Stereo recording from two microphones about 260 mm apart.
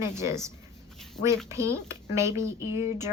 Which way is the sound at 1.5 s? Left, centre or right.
Centre.